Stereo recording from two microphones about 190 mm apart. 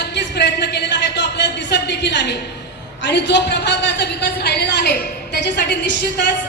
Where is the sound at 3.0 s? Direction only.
65° left (ahead or behind).